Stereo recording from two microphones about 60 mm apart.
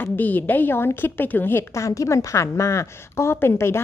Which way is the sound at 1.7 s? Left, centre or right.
Left.